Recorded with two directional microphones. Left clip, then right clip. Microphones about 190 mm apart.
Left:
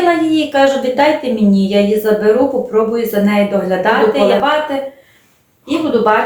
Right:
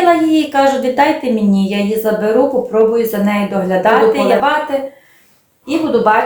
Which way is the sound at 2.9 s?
25° right (ahead or behind).